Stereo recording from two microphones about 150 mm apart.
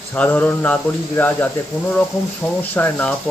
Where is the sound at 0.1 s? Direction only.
10° left (ahead or behind).